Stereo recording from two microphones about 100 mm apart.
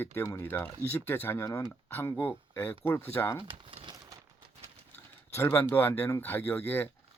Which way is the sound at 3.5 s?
60° right (ahead or behind).